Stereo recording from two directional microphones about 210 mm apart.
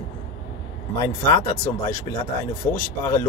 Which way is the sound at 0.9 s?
15° left (ahead or behind).